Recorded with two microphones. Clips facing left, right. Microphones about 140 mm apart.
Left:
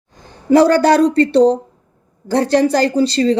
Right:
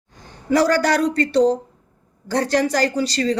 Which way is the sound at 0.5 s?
30° left (ahead or behind).